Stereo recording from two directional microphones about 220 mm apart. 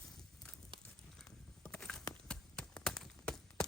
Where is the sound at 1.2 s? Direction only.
5° left (ahead or behind).